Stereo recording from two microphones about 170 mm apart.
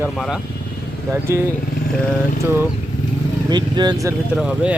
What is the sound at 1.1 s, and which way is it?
Speech, 15° right (ahead or behind).